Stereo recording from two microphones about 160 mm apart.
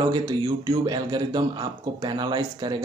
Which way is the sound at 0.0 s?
25° right (ahead or behind).